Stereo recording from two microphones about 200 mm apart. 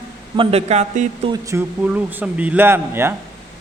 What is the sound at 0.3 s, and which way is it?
Speech, 30° right (ahead or behind).